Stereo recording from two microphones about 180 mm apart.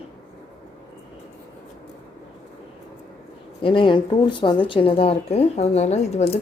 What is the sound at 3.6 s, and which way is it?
Speech, 30° left (ahead or behind).